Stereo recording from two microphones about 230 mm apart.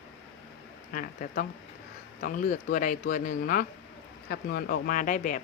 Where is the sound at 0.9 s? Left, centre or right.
Left.